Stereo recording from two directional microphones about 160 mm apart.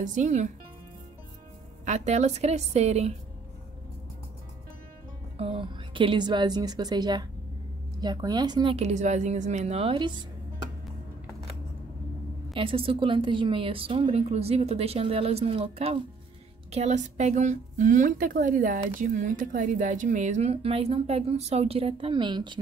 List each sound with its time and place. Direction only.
0.0 s a woman's voice: 50° right (ahead or behind)
1.9 s a woman's voice: 45° right (ahead or behind)
5.4 s a woman's voice: 35° right (ahead or behind)
8.7 s a woman's voice: 45° right (ahead or behind); by 10.2 s 30° right (ahead or behind)
12.5 s a woman's voice: 35° right (ahead or behind)